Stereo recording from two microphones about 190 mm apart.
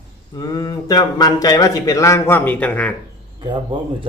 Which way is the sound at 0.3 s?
20° left (ahead or behind).